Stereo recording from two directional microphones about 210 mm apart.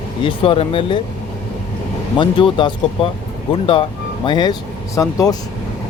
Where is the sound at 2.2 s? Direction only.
25° left (ahead or behind).